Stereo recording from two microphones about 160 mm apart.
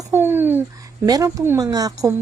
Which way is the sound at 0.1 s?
15° right (ahead or behind).